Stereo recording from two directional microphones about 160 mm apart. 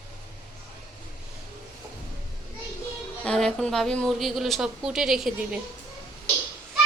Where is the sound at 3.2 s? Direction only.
5° left (ahead or behind).